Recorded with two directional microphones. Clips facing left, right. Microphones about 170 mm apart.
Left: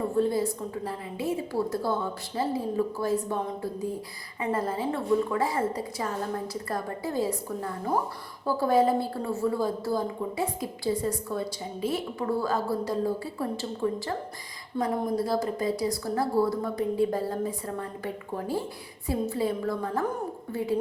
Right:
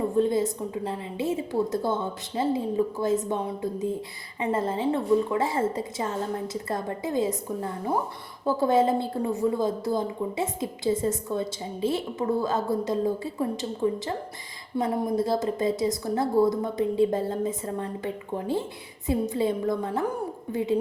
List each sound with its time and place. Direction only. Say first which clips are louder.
0.2 s a woman's voice: right 2 dB; 20° right (ahead or behind)